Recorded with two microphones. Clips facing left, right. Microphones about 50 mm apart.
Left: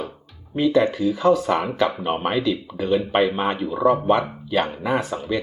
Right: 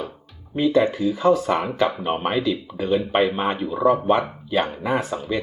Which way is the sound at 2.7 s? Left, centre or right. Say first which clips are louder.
Left 1 dB; centre.